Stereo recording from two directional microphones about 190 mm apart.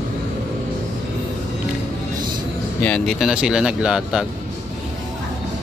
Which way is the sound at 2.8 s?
5° left (ahead or behind).